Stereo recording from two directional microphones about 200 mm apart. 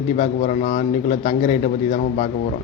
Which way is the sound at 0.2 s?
35° left (ahead or behind).